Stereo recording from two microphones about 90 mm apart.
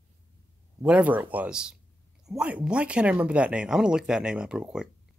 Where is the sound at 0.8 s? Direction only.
15° right (ahead or behind).